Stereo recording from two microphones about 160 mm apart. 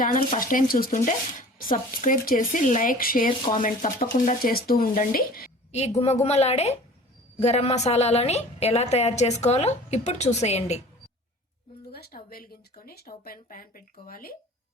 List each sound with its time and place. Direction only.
0.3 s speech: 60° left (ahead or behind)
5.7 s a woman's voice: 45° left (ahead or behind)
11.9 s speech: 75° left (ahead or behind)